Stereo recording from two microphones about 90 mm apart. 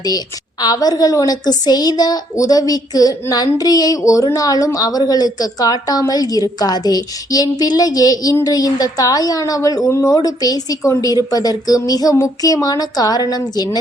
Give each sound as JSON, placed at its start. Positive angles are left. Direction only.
{"t": 0.6, "sound": "a woman's voice", "side_deg": 45}